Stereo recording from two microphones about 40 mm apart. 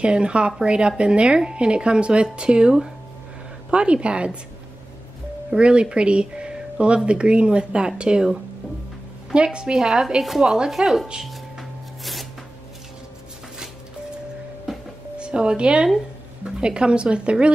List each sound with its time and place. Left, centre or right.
0.0 s a woman's voice: right
5.5 s a woman's voice: right; by 11.1 s centre
12.0 s music: centre
14.7 s a sound: centre
15.1 s a woman's voice: right